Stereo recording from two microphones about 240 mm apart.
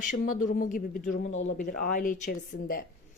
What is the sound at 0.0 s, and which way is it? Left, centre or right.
Speech, left.